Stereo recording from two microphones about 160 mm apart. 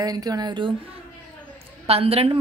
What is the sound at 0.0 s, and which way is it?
Speech, 25° right (ahead or behind).